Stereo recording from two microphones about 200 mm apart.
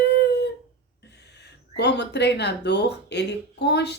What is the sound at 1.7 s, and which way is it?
Speech, 60° left (ahead or behind).